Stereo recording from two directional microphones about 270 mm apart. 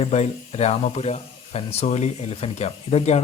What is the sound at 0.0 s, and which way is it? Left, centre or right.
Speech, left.